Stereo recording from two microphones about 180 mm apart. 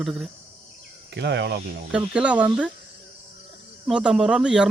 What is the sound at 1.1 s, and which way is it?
Speech, 70° right (ahead or behind).